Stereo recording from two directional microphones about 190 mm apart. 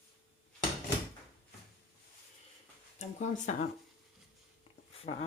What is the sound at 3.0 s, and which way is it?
Speech, 40° left (ahead or behind).